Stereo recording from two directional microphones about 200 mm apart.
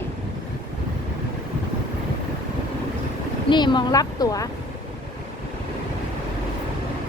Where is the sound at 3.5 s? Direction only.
20° left (ahead or behind).